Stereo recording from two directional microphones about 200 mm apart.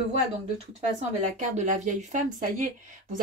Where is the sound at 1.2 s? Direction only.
35° right (ahead or behind).